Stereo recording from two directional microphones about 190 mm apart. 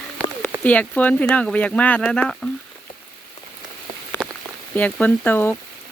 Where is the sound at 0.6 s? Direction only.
10° left (ahead or behind).